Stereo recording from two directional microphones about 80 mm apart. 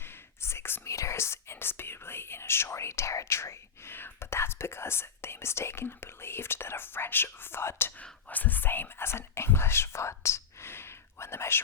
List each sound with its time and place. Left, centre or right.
0.0 s whispering: left
8.0 s speech: left